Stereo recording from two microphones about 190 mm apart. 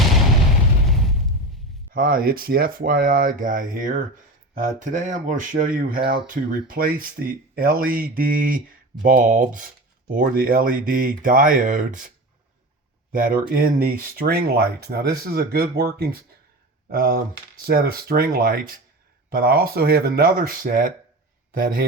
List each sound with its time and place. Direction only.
1.9 s speech: 50° right (ahead or behind)
13.1 s speech: 50° right (ahead or behind)